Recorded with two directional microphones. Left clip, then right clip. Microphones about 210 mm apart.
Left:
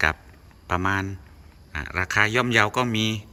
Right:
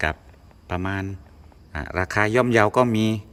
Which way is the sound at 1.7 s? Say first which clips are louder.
Even; 20° right (ahead or behind).